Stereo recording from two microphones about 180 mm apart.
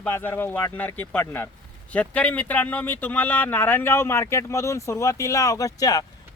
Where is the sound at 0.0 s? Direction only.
10° left (ahead or behind).